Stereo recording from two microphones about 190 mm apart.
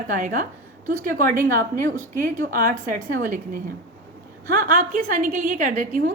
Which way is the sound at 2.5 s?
45° right (ahead or behind).